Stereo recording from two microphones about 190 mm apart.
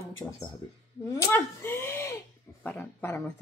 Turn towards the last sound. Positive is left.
turn(degrees=10)  # may be behind; listen again after turning